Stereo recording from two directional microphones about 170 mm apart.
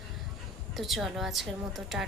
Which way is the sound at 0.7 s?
Centre (ahead or behind).